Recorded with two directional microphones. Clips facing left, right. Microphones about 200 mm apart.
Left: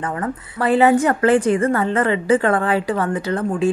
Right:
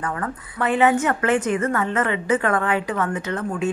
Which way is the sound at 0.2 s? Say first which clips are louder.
Left 3 dB; 35° left (ahead or behind).